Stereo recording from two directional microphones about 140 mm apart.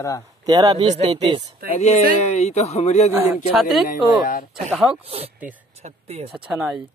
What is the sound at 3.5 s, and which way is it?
Speech, centre (ahead or behind).